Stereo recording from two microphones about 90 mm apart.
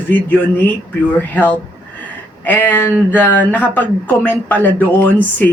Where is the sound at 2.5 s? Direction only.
20° left (ahead or behind).